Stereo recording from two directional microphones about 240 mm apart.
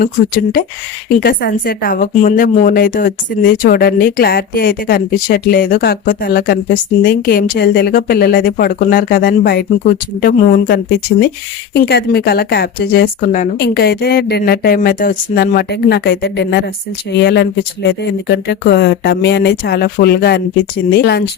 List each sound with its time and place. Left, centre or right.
1.2 s a woman's voice: left